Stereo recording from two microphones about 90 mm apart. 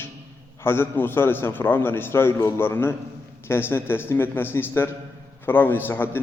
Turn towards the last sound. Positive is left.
turn(degrees=25)  # may be behind; listen again after turning